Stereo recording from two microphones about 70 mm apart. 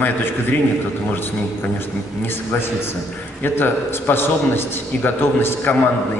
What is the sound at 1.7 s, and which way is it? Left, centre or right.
A man's voice, left.